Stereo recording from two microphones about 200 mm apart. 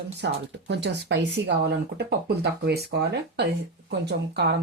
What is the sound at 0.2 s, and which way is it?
Speech, 65° right (ahead or behind).